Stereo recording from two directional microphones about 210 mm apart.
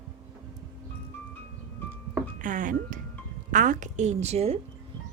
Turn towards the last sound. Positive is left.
turn(degrees=-30)  # may be behind; listen again after turning